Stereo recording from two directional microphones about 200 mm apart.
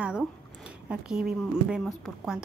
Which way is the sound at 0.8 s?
5° right (ahead or behind).